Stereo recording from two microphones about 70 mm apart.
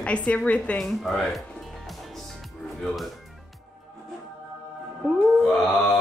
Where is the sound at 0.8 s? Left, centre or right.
Centre.